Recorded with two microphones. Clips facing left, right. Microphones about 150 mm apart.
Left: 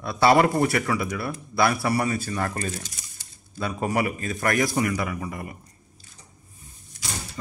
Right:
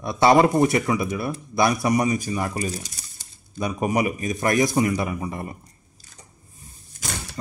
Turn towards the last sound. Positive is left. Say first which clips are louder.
# right 3 dB
turn(degrees=-50)  # may be behind; listen again after turning